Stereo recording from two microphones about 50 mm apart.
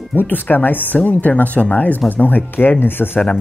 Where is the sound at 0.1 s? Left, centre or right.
Left.